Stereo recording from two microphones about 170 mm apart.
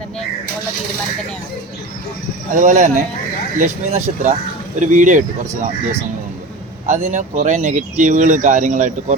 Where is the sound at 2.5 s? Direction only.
50° right (ahead or behind).